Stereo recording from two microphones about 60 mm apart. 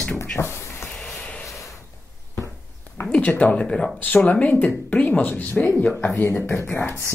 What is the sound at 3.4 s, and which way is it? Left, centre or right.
Speech, centre.